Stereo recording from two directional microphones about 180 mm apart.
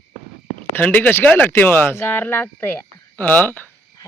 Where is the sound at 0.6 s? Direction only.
10° left (ahead or behind).